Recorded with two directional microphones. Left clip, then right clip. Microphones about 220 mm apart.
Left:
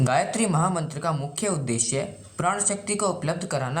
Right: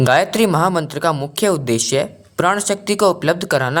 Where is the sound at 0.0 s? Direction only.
45° right (ahead or behind).